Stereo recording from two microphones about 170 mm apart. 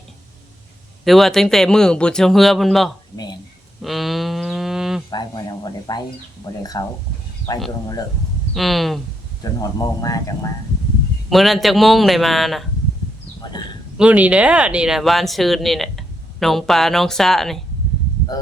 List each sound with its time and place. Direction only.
1.0 s speech: centre (ahead or behind)
3.8 s livestock: centre (ahead or behind)
5.1 s speech: 25° left (ahead or behind)
8.5 s speech: centre (ahead or behind)
9.4 s speech: 20° left (ahead or behind)
11.3 s speech: centre (ahead or behind)
13.5 s speech: 25° left (ahead or behind)
14.0 s speech: 10° right (ahead or behind)